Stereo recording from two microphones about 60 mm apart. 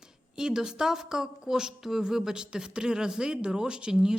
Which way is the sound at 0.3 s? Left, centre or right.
Centre.